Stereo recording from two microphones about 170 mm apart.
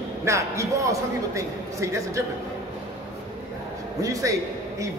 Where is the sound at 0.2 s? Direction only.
15° right (ahead or behind).